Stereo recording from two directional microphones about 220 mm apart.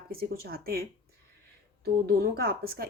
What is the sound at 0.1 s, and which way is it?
Speech, 45° right (ahead or behind).